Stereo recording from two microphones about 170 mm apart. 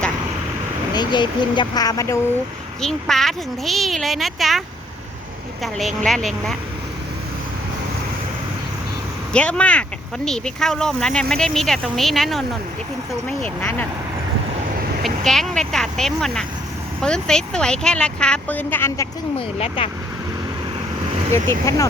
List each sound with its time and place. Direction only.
0.9 s speech: 25° left (ahead or behind)
2.8 s speech: centre (ahead or behind)
5.6 s speech: centre (ahead or behind)
9.3 s speech: 5° left (ahead or behind)
13.6 s speech: 10° left (ahead or behind)
15.0 s speech: centre (ahead or behind)
19.5 s speech: 35° left (ahead or behind)
21.3 s speech: 15° left (ahead or behind)